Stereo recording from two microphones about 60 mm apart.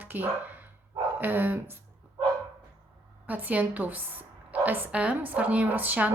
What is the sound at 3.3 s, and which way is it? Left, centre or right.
A woman's voice, right.